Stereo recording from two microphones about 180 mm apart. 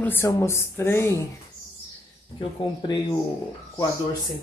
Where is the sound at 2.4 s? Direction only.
25° left (ahead or behind).